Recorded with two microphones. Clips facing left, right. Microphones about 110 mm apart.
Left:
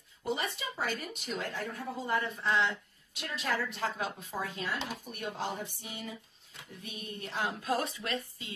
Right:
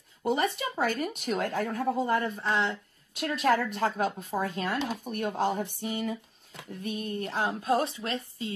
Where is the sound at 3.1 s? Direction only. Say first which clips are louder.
Right 9 dB; 55° right (ahead or behind).